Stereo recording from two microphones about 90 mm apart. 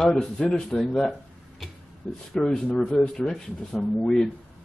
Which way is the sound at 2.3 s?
10° left (ahead or behind).